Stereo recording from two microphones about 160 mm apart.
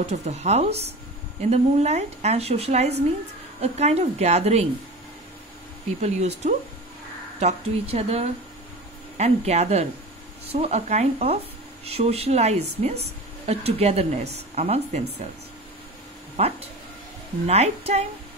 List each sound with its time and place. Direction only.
0.0 s a woman's voice: 45° right (ahead or behind)
5.9 s a woman's voice: 45° right (ahead or behind)
16.4 s a woman's voice: 40° right (ahead or behind)